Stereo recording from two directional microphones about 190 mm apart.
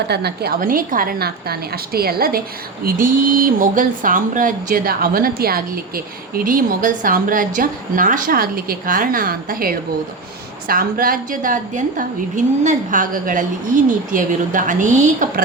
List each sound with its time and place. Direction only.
0.1 s a woman's voice: 60° right (ahead or behind); by 15.3 s 40° right (ahead or behind)